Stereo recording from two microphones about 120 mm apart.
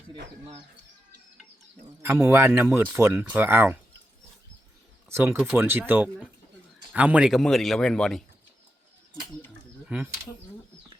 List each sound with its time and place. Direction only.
2.0 s speech: 20° right (ahead or behind)
5.0 s speech: 20° right (ahead or behind)
7.3 s speech: centre (ahead or behind)
9.8 s speech: 10° right (ahead or behind)